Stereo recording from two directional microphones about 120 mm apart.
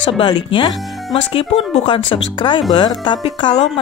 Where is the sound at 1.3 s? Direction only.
55° left (ahead or behind).